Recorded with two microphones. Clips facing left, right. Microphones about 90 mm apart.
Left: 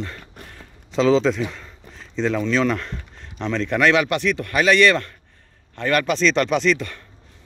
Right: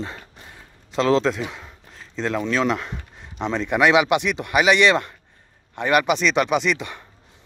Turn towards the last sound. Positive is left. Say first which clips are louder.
# left 2 dB
turn(degrees=-15)  # may be behind; listen again after turning